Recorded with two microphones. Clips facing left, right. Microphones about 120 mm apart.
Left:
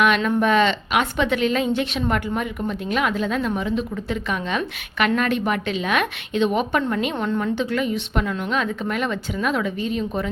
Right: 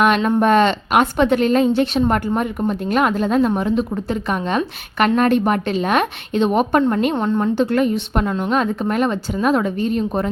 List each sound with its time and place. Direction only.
0.0 s a woman's voice: 40° right (ahead or behind)